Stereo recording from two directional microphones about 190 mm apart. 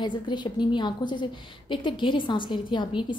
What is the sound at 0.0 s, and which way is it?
A woman's voice, 25° left (ahead or behind).